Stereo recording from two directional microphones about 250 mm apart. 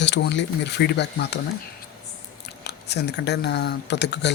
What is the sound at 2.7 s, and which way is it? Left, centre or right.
Speech, left.